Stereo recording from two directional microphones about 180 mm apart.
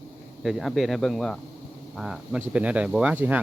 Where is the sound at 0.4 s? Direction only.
Centre (ahead or behind).